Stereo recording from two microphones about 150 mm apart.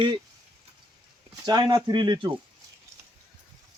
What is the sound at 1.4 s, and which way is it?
Speech, 25° right (ahead or behind).